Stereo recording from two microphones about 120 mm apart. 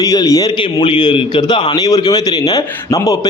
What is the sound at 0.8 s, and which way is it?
A man's voice, 45° left (ahead or behind).